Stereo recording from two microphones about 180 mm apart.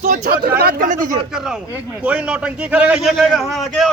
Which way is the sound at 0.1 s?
60° right (ahead or behind).